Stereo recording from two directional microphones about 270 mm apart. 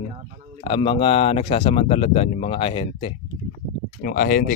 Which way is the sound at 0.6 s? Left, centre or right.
Centre.